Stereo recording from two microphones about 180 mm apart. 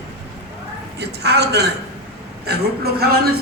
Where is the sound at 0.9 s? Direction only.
65° right (ahead or behind).